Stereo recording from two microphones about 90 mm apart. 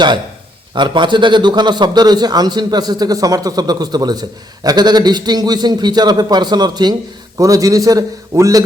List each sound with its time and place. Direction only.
0.7 s a man's voice: 60° right (ahead or behind)
7.3 s a man's voice: 40° right (ahead or behind)